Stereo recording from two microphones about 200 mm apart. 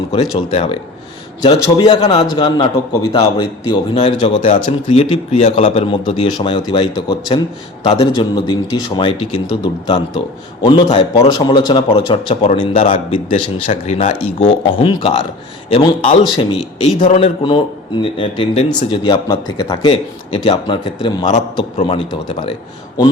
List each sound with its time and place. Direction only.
0.1 s a man's voice: 30° left (ahead or behind)